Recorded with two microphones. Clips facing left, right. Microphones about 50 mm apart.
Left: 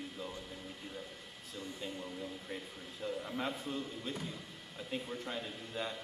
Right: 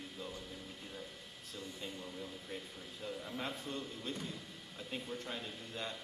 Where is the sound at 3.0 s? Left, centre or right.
Centre.